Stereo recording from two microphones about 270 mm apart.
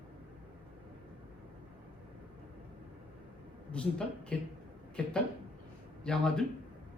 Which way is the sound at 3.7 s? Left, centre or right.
Centre.